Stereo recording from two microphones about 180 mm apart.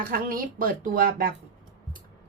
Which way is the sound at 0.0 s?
50° right (ahead or behind).